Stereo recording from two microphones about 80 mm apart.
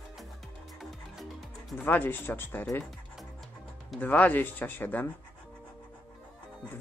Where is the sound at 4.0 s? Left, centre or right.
Left.